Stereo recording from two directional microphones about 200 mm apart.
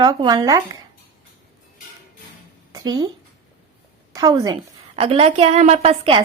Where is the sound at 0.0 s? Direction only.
20° right (ahead or behind).